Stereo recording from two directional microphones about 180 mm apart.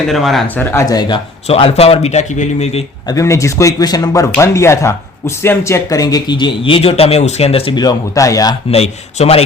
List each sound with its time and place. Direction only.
0.1 s speech: centre (ahead or behind); by 2.8 s 40° left (ahead or behind)
3.1 s speech: 15° left (ahead or behind)
8.7 s speech: 35° left (ahead or behind)